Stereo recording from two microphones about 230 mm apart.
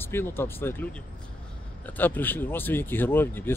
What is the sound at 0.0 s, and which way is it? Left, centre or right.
Speech, centre.